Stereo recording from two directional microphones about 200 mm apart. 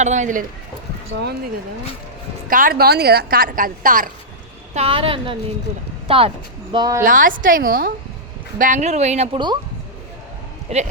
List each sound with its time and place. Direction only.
0.0 s speech: 35° right (ahead or behind)
2.5 s a woman's voice: 45° right (ahead or behind)
4.7 s a woman's voice: 30° right (ahead or behind)
7.0 s a woman's voice: 40° right (ahead or behind); by 9.6 s 25° right (ahead or behind)
10.7 s speech: 30° right (ahead or behind)